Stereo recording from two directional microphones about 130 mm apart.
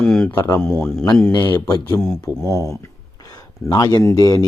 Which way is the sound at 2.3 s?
20° right (ahead or behind).